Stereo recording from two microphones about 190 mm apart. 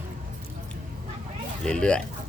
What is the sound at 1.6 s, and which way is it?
Speech, 5° left (ahead or behind).